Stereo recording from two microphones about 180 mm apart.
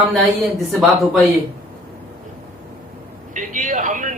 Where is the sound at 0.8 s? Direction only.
Centre (ahead or behind).